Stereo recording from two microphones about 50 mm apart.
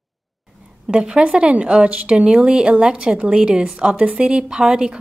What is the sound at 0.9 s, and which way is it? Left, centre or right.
A woman's voice, centre.